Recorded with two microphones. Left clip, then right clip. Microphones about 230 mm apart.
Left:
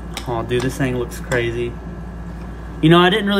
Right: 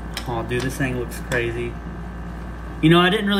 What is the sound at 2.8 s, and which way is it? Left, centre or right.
Speech, centre.